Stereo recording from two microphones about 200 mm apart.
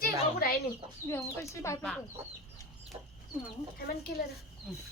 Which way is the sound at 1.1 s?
15° left (ahead or behind).